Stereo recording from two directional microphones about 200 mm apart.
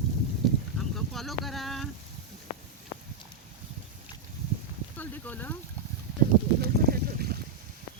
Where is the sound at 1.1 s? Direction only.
Centre (ahead or behind).